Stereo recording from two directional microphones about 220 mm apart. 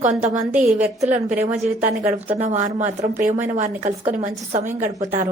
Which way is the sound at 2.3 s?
30° right (ahead or behind).